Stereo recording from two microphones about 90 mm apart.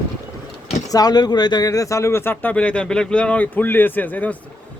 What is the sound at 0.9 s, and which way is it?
Speech, 45° left (ahead or behind).